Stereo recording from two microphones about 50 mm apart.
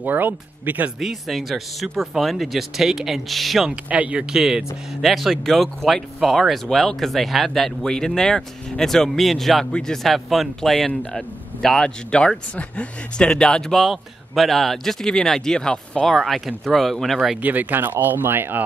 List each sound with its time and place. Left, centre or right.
0.0 s speech: right
0.9 s speech: centre
3.9 s speech: right
4.3 s speech: centre
5.0 s speech: centre
9.7 s speech: centre
10.0 s speech: centre
13.8 s speech: centre
17.4 s speech: right